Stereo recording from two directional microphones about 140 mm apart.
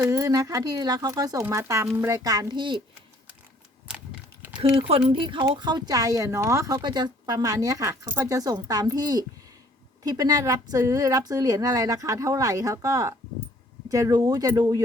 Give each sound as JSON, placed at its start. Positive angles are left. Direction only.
{"t": 0.0, "sound": "speech", "side_deg": -25}
{"t": 4.9, "sound": "speech", "side_deg": -40}